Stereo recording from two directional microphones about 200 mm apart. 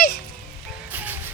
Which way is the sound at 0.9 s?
10° right (ahead or behind).